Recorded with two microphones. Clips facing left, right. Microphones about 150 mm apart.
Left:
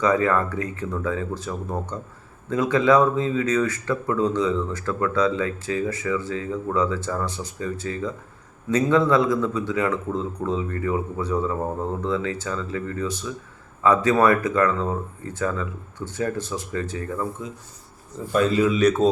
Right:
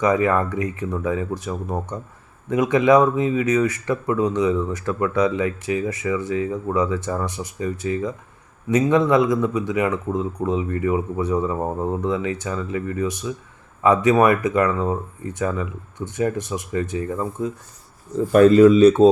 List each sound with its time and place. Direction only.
0.0 s speech: 15° right (ahead or behind)
18.3 s speech: 55° right (ahead or behind)
18.8 s a man's voice: 30° right (ahead or behind)